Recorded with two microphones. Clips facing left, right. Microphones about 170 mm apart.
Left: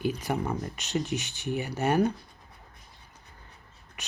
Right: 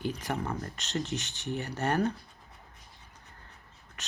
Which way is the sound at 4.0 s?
10° left (ahead or behind).